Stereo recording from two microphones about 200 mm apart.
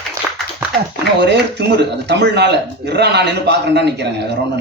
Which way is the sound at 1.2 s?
60° right (ahead or behind).